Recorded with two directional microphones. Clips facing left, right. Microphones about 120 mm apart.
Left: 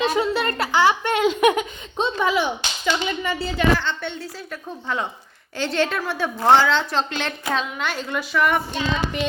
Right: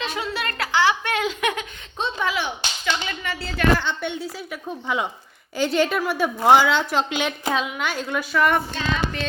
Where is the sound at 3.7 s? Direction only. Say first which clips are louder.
Right 1 dB; 10° right (ahead or behind).